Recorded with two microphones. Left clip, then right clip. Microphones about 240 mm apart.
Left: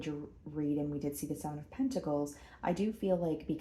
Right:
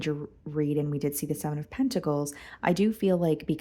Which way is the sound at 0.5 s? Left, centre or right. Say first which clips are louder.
Right 7 dB; right.